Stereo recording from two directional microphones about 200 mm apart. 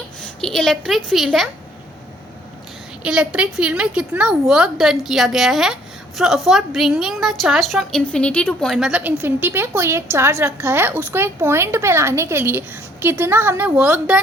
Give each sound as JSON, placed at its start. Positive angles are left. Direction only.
{"t": 0.4, "sound": "a woman's voice", "side_deg": 5}
{"t": 3.0, "sound": "a woman's voice", "side_deg": -5}